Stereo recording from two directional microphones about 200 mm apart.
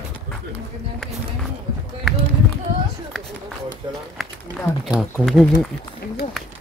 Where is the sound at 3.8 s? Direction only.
20° right (ahead or behind).